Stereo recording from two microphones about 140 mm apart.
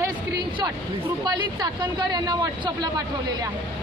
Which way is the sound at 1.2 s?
30° right (ahead or behind).